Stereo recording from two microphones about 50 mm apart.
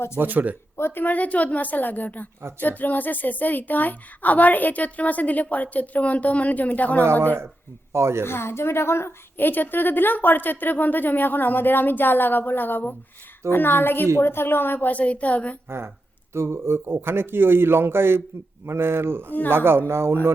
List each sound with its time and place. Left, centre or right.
0.2 s speech: right
0.8 s a woman's voice: left
1.0 s a woman's voice: left
7.0 s speech: right
8.2 s a woman's voice: left
9.4 s a woman's voice: left
16.3 s a man's voice: right